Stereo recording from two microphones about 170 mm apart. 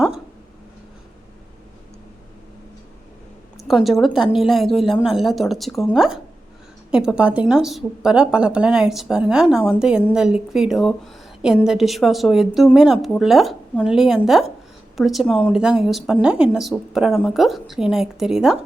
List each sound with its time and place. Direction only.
3.7 s speech: centre (ahead or behind)